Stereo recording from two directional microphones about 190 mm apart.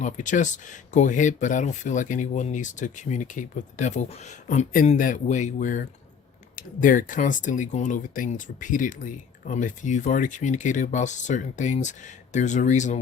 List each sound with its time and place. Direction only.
0.0 s speech: 40° left (ahead or behind)